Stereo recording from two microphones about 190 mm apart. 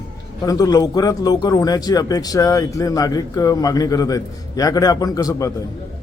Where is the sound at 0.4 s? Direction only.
20° left (ahead or behind).